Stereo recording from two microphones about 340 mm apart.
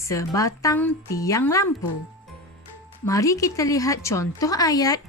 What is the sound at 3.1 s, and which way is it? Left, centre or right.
A woman's voice, centre.